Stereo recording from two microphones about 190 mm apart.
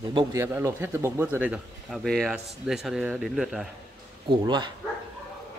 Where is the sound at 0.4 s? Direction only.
15° right (ahead or behind).